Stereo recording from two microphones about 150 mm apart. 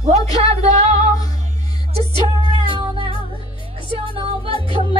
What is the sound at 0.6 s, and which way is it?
Music, 45° right (ahead or behind).